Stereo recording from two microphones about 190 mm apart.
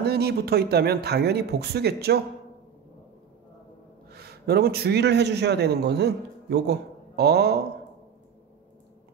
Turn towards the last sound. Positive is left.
turn(degrees=-60)  # may be behind; listen again after turning